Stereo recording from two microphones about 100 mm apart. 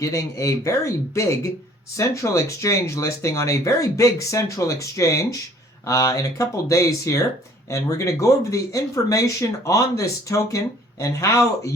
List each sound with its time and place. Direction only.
0.0 s speech: 35° left (ahead or behind)